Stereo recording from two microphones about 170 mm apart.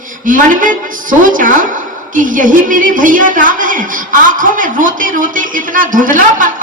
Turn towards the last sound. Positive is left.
turn(degrees=-50)  # may be behind; listen again after turning